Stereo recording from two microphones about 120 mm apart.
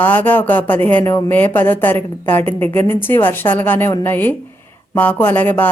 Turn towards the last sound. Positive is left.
turn(degrees=15)  # may be behind; listen again after turning